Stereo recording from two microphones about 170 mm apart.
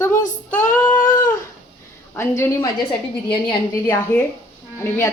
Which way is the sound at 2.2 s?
15° left (ahead or behind).